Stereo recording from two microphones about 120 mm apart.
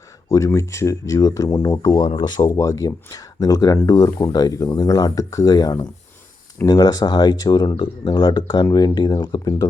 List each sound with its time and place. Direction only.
0.3 s speech: 25° left (ahead or behind)
2.6 s speech: 25° left (ahead or behind)